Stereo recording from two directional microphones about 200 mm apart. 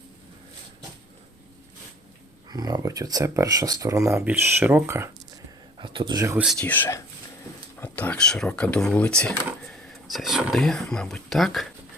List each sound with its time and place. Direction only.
2.5 s speech: 20° right (ahead or behind)
5.8 s speech: 25° right (ahead or behind)
6.3 s speech: centre (ahead or behind)